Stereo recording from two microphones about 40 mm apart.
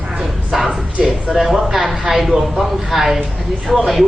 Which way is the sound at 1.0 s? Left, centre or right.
Centre.